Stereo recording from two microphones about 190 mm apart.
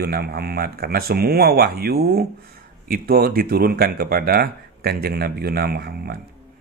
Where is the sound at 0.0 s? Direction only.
55° right (ahead or behind).